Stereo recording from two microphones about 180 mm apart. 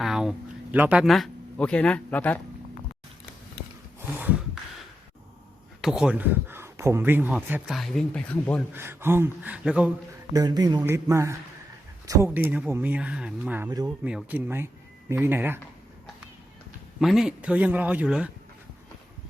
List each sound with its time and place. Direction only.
0.0 s speech: centre (ahead or behind)
5.8 s speech: 5° right (ahead or behind)
7.8 s speech: 5° left (ahead or behind)
8.7 s speech: 10° right (ahead or behind)
10.3 s speech: 20° right (ahead or behind)
13.7 s speech: 20° right (ahead or behind)
14.0 s speech: 5° right (ahead or behind)
17.0 s speech: centre (ahead or behind)